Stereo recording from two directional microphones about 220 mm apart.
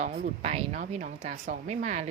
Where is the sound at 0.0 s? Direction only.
30° right (ahead or behind).